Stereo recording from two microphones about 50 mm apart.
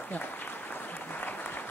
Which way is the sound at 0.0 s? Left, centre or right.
Left.